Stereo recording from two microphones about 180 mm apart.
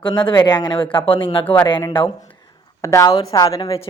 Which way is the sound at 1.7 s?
25° left (ahead or behind).